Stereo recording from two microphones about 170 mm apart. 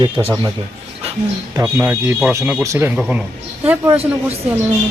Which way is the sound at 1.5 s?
15° right (ahead or behind).